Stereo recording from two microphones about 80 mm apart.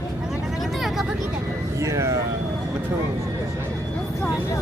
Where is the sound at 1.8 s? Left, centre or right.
Right.